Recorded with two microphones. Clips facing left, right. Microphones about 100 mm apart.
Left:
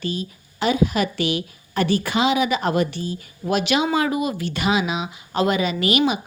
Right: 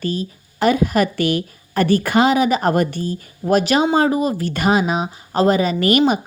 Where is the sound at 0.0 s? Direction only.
45° right (ahead or behind).